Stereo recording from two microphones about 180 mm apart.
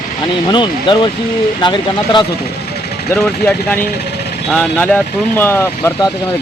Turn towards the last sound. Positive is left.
turn(degrees=15)  # may be behind; listen again after turning